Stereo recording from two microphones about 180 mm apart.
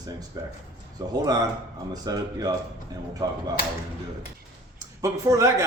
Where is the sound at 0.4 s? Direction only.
20° right (ahead or behind).